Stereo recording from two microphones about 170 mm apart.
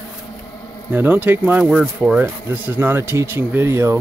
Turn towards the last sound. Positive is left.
turn(degrees=-15)  # may be behind; listen again after turning